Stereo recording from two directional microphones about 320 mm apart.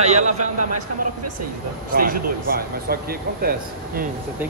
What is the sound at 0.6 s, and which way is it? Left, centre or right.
Speech, right.